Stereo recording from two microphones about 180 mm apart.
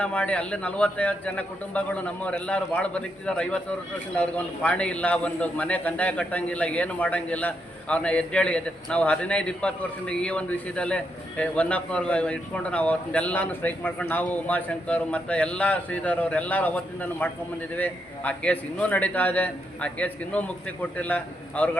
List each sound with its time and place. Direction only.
0.0 s a man's voice: 5° left (ahead or behind)